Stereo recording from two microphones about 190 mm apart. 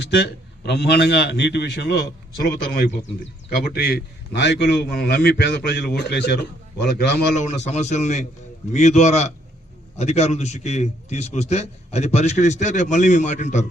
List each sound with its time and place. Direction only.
0.0 s a man's voice: 60° left (ahead or behind)
3.6 s a man's voice: 60° left (ahead or behind)
7.3 s a man's voice: 40° left (ahead or behind)